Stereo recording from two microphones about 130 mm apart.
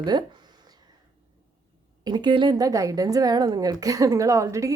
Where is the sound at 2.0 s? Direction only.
35° right (ahead or behind).